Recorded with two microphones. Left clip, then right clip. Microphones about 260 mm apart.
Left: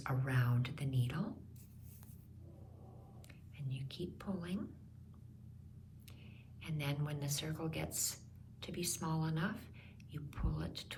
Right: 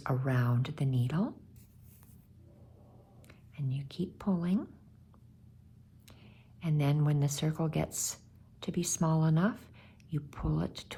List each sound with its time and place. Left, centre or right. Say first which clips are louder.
0.0 s speech: right 6 dB; centre
3.2 s speech: right 9 dB; centre
6.6 s speech: right 9 dB; right